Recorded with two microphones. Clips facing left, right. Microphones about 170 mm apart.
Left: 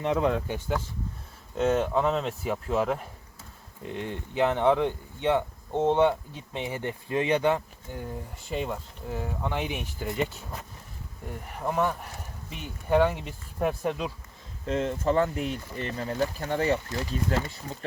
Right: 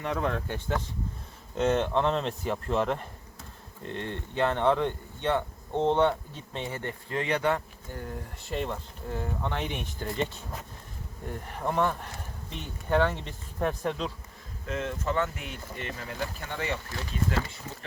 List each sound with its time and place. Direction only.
0.0 s speech: 15° left (ahead or behind)
14.7 s speech: 30° left (ahead or behind)